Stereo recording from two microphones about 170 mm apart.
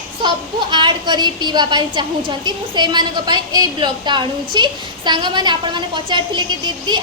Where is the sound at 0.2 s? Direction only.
25° right (ahead or behind).